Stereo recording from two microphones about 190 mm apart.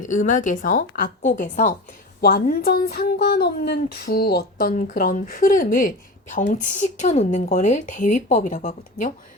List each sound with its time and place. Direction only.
0.0 s a woman's voice: 40° left (ahead or behind)